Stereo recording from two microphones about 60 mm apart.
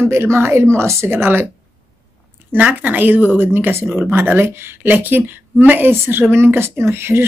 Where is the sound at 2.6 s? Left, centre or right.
Right.